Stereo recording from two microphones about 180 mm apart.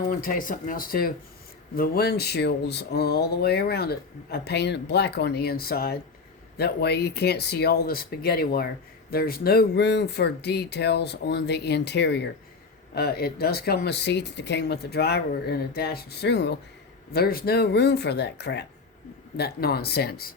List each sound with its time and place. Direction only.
0.1 s speech: 50° left (ahead or behind); by 16.6 s 70° left (ahead or behind)
17.1 s speech: 60° left (ahead or behind)